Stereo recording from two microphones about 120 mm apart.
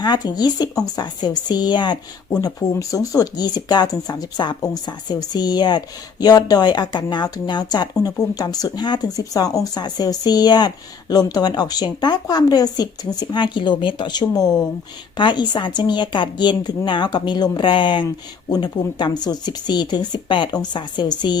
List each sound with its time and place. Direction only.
0.0 s a woman's voice: 35° left (ahead or behind)